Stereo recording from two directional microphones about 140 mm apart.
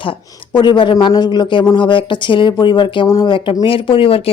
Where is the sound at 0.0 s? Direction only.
35° left (ahead or behind).